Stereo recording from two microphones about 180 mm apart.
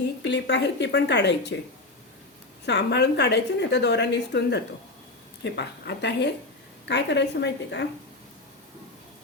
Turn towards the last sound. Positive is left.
turn(degrees=75)  # may be behind; listen again after turning